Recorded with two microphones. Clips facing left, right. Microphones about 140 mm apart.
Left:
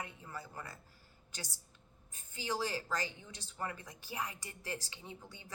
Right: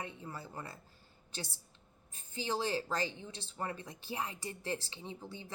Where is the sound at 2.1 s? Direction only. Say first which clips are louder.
Right 2 dB; 25° right (ahead or behind).